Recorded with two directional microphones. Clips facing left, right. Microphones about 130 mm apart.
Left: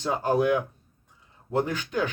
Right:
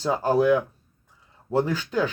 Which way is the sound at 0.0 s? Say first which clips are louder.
Right 3 dB; 35° right (ahead or behind).